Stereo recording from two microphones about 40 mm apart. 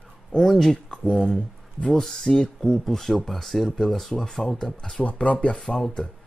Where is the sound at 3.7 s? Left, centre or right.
Centre.